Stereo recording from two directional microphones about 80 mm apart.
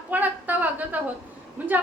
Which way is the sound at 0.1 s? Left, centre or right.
Right.